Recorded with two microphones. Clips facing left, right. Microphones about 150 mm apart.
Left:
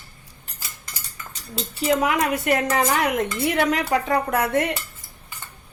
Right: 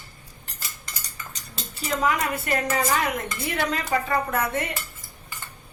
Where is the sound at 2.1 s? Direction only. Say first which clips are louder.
Left 4 dB; 75° left (ahead or behind).